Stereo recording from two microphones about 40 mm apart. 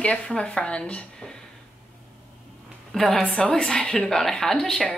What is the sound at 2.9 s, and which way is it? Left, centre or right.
Speech, centre.